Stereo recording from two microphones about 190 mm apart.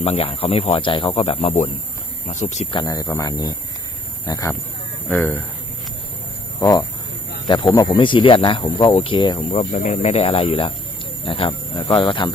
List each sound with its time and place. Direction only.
0.0 s speech: 30° left (ahead or behind)
2.8 s speech: 20° left (ahead or behind)
6.6 s speech: 20° left (ahead or behind)